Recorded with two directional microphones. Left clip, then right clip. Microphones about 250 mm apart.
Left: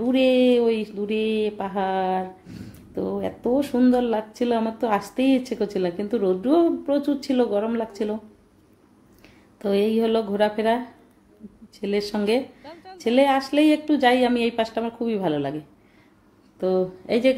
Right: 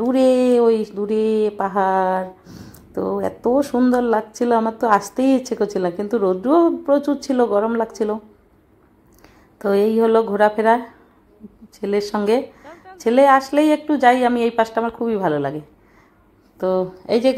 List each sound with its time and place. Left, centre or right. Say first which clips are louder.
0.0 s a woman's voice: right 3 dB; centre
9.6 s a woman's voice: right 5 dB; centre
11.8 s a woman's voice: right 4 dB; centre
16.5 s a woman's voice: right 3 dB; centre